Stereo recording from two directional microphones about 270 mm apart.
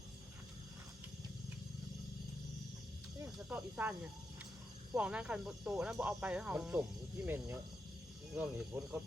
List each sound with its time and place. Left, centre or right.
3.3 s speech: centre
4.9 s speech: centre